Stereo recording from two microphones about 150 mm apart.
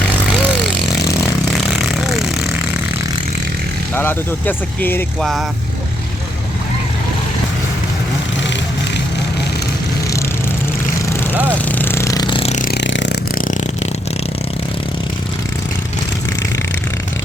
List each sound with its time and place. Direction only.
0.4 s vehicle: 5° right (ahead or behind)
3.9 s speech: 15° left (ahead or behind)
5.2 s speech: centre (ahead or behind)
11.5 s vehicle: 10° left (ahead or behind); by 12.5 s 30° left (ahead or behind)
12.5 s a sound: 55° left (ahead or behind)